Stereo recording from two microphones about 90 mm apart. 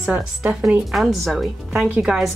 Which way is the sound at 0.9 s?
Centre (ahead or behind).